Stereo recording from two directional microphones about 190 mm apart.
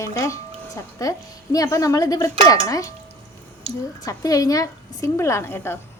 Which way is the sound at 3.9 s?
20° left (ahead or behind).